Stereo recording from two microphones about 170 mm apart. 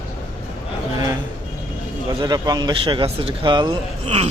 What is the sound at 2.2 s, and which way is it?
Speech, 25° right (ahead or behind).